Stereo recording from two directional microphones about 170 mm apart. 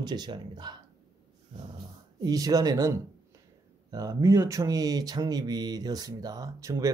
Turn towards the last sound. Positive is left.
turn(degrees=-20)  # may be behind; listen again after turning